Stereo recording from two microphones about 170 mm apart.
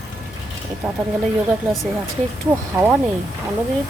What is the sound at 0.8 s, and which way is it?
Speech, 5° right (ahead or behind).